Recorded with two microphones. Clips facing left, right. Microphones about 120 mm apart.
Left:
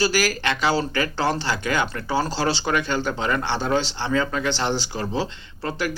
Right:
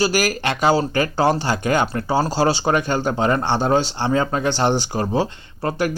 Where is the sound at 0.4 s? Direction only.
40° right (ahead or behind).